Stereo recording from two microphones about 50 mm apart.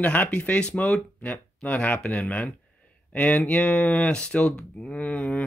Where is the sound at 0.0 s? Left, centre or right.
Left.